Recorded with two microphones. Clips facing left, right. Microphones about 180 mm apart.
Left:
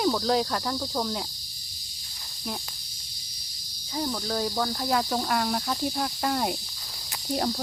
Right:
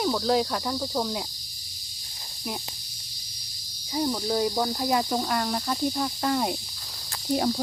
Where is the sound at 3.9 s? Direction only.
15° right (ahead or behind).